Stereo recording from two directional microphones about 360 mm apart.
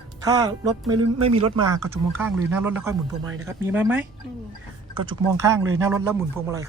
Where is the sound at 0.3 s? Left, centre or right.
Centre.